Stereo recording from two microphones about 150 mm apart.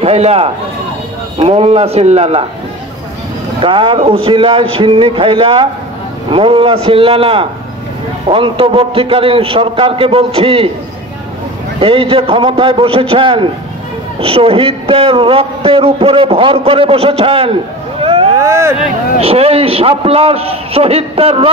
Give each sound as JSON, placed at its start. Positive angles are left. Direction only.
{"t": 0.0, "sound": "a man's voice", "side_deg": -45}
{"t": 3.6, "sound": "a man's voice", "side_deg": -35}
{"t": 11.8, "sound": "a man's voice", "side_deg": -35}
{"t": 18.0, "sound": "vehicle", "side_deg": -40}
{"t": 18.4, "sound": "speech", "side_deg": -20}
{"t": 19.1, "sound": "a man's voice", "side_deg": -40}